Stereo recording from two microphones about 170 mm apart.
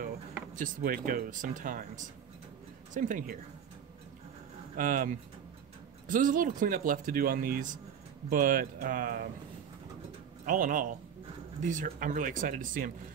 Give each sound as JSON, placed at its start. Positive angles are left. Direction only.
{"t": 0.6, "sound": "speech", "side_deg": -55}
{"t": 4.7, "sound": "speech", "side_deg": -50}
{"t": 10.4, "sound": "speech", "side_deg": -50}